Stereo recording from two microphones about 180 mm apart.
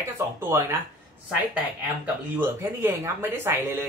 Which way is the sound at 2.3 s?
15° right (ahead or behind).